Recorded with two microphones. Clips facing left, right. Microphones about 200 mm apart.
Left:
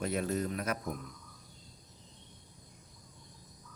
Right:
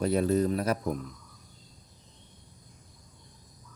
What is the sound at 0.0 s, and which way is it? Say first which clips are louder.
Speech: right 8 dB; 35° right (ahead or behind).